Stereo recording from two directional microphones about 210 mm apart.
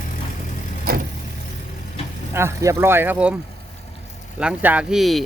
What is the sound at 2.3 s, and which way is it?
Speech, 15° right (ahead or behind).